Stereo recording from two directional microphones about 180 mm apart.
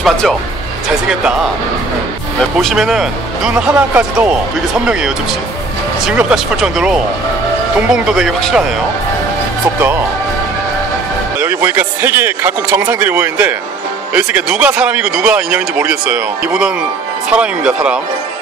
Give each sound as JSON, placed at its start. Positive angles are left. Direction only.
{"t": 0.0, "sound": "speech", "side_deg": 0}
{"t": 2.5, "sound": "speech", "side_deg": 0}
{"t": 11.3, "sound": "speech", "side_deg": -10}